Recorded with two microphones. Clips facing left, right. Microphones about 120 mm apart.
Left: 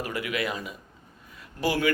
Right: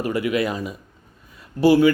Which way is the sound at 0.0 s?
30° right (ahead or behind).